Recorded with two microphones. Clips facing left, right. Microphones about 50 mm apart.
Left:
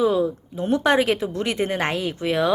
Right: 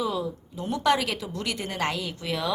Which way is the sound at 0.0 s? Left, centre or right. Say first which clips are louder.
Left 9 dB; left.